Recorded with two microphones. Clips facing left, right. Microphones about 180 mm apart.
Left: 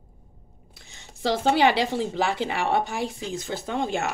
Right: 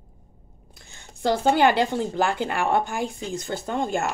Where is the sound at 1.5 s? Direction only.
Centre (ahead or behind).